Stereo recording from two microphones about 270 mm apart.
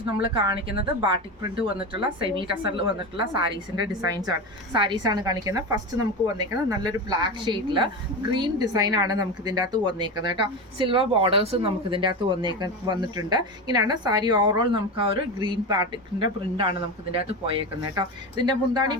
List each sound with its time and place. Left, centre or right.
0.2 s a woman's voice: centre